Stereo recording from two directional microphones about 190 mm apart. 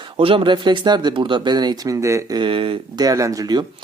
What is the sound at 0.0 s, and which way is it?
Speech, 30° right (ahead or behind).